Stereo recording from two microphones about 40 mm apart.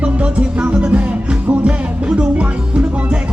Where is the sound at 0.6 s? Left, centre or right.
Right.